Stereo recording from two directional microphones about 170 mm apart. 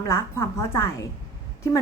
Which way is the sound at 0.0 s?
20° left (ahead or behind).